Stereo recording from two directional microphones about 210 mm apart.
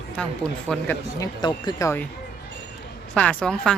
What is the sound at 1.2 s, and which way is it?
Speech, 20° left (ahead or behind).